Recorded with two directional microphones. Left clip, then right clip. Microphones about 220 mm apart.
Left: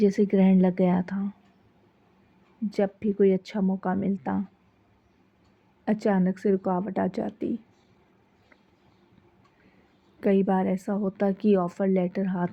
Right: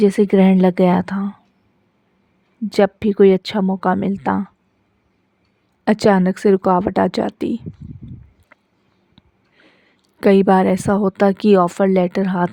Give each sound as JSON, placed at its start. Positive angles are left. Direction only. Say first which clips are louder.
{"t": 0.0, "sound": "a woman's voice", "louder": "right 9 dB", "side_deg": -50}
{"t": 2.6, "sound": "a woman's voice", "louder": "right 11 dB", "side_deg": -50}
{"t": 5.8, "sound": "a woman's voice", "louder": "right 11 dB", "side_deg": -50}
{"t": 8.5, "sound": "a sound", "louder": "right 9 dB", "side_deg": -50}
{"t": 10.2, "sound": "a woman's voice", "louder": "right 11 dB", "side_deg": -55}